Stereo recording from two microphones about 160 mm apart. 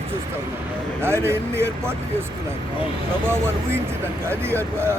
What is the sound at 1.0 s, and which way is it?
Speech, 15° right (ahead or behind).